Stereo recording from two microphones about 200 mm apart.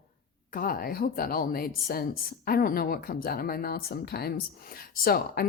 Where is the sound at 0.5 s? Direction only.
45° left (ahead or behind).